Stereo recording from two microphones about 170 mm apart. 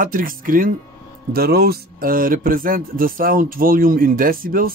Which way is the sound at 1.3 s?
65° right (ahead or behind).